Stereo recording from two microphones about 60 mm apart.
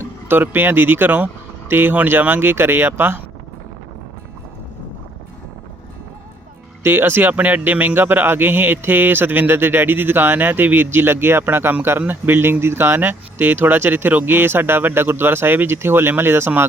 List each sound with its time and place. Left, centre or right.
0.0 s speech: right
6.8 s speech: right